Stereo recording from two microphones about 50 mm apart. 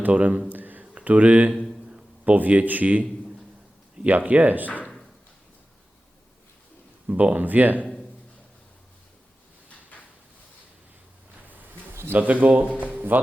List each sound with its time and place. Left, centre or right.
0.0 s speech: right
0.4 s a sound: right
0.9 s speech: right
7.1 s speech: right
12.1 s speech: right